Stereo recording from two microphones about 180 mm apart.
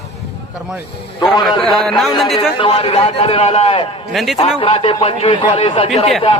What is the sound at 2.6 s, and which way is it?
A man's voice, 35° left (ahead or behind).